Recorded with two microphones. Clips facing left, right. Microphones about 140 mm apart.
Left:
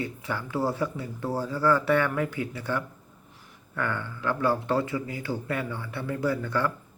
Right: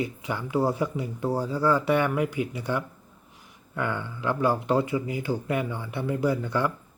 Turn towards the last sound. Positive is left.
turn(degrees=-15)  # may be behind; listen again after turning